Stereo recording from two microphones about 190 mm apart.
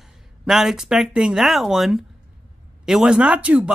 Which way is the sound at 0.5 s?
Centre (ahead or behind).